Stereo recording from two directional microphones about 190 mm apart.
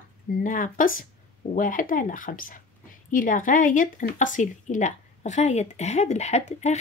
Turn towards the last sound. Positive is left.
turn(degrees=35)  # may be behind; listen again after turning